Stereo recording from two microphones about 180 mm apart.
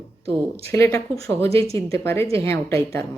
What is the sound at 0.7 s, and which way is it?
A woman's voice, 15° left (ahead or behind).